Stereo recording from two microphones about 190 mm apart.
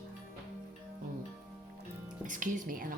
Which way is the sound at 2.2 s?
45° right (ahead or behind).